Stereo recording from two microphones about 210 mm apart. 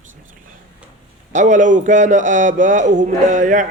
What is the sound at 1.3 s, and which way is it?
Speech, 35° right (ahead or behind).